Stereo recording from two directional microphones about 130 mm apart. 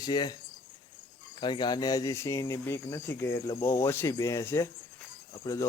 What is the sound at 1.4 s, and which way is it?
Speech, 35° left (ahead or behind).